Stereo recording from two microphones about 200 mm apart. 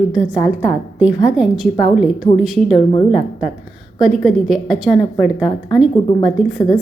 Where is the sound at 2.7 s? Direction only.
25° left (ahead or behind).